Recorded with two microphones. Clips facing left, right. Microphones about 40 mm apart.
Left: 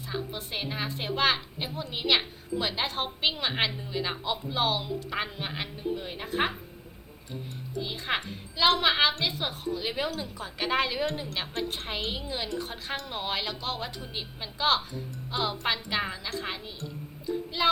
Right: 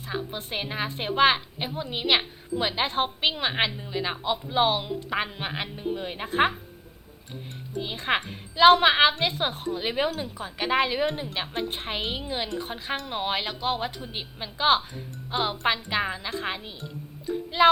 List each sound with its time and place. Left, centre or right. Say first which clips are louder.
0.3 s a woman's voice: right 3 dB; right
7.8 s a woman's voice: right 4 dB; right
10.4 s a woman's voice: right 3 dB; centre
15.7 s a woman's voice: right 3 dB; centre
17.2 s a sound: right 7 dB; right